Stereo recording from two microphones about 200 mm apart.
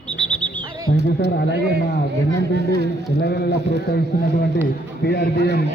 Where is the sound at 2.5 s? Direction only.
60° left (ahead or behind).